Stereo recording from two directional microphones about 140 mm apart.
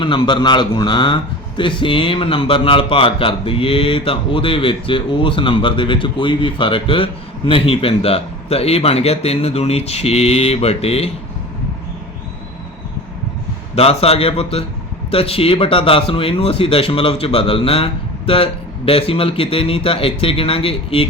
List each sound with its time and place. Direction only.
0.0 s a man's voice: 35° left (ahead or behind)
13.7 s a man's voice: 45° left (ahead or behind)